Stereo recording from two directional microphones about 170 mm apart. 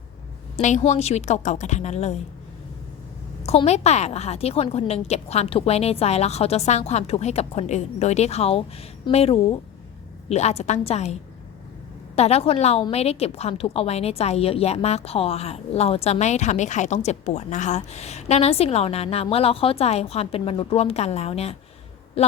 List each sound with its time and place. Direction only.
0.5 s a woman's voice: 40° left (ahead or behind)
3.4 s a woman's voice: 40° left (ahead or behind)